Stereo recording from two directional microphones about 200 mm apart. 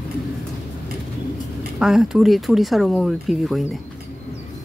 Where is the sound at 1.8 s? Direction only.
Centre (ahead or behind).